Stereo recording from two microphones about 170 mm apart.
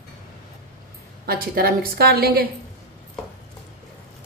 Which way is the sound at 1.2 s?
60° right (ahead or behind).